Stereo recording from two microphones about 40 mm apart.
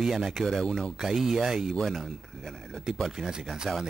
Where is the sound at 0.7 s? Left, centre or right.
Left.